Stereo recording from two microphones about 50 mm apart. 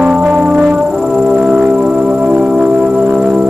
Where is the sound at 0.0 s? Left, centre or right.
Right.